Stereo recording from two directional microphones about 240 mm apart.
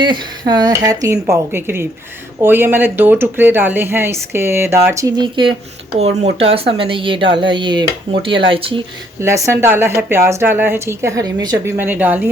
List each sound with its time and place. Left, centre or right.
0.0 s a woman's voice: centre
9.2 s speech: centre